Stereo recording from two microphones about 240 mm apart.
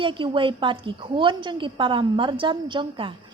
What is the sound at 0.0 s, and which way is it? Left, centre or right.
A woman's voice, right.